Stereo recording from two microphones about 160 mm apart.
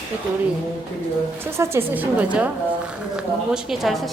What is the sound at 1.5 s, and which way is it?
A woman's voice, 15° right (ahead or behind).